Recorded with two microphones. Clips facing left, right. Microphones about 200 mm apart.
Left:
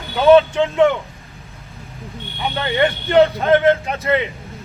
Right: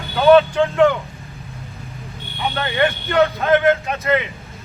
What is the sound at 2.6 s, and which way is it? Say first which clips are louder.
Speech: left 2 dB; 30° left (ahead or behind).